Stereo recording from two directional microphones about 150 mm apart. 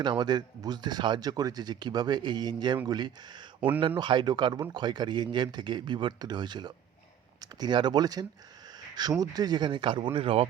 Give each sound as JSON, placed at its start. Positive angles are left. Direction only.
{"t": 0.0, "sound": "speech", "side_deg": -30}